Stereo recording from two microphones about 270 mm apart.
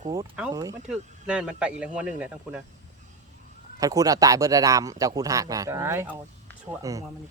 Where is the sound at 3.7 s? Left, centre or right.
Centre.